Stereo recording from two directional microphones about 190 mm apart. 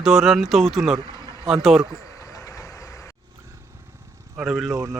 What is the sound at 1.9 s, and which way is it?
Insect, 15° left (ahead or behind).